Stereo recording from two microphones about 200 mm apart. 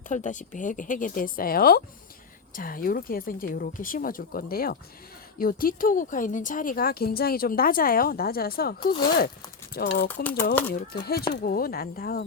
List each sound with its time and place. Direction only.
0.1 s speech: 40° left (ahead or behind)
8.8 s speech: 25° left (ahead or behind)
9.7 s speech: 50° left (ahead or behind)